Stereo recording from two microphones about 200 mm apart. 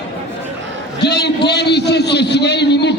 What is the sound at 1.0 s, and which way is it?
A man's voice, 55° left (ahead or behind).